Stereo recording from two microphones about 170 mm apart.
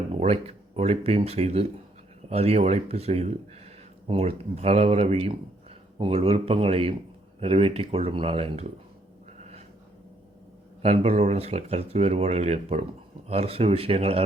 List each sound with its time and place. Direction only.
0.2 s speech: 35° right (ahead or behind)
9.4 s a sound: 40° right (ahead or behind)
10.8 s speech: 40° right (ahead or behind)